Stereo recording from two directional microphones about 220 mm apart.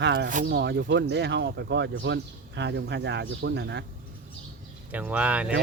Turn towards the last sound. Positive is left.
turn(degrees=-5)  # may be behind; listen again after turning